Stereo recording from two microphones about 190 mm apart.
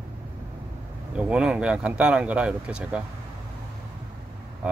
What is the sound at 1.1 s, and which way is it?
Speech, 5° right (ahead or behind).